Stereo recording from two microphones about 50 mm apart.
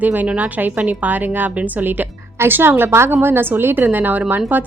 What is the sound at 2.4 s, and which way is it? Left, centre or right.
Speech, right.